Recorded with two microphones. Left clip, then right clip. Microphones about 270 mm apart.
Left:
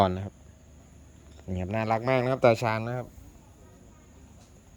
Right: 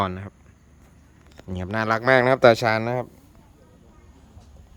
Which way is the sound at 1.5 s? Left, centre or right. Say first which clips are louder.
Right 5 dB; centre.